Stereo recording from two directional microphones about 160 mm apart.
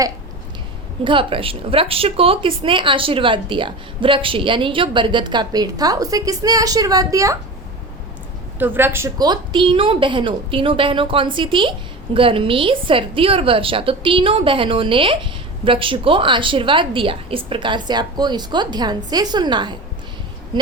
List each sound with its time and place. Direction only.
1.0 s speech: 30° right (ahead or behind)
8.5 s speech: 15° right (ahead or behind); by 20.7 s 30° right (ahead or behind)